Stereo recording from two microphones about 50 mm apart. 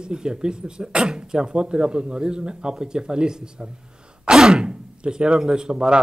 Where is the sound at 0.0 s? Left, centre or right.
Centre.